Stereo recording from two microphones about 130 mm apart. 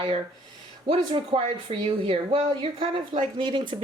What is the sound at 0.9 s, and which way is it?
Speech, 45° right (ahead or behind).